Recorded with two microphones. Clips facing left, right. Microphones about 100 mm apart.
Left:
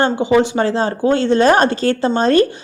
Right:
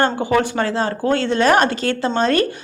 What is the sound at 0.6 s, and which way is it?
Speech, 30° left (ahead or behind).